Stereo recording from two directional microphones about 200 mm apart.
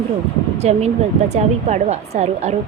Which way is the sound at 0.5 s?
30° right (ahead or behind).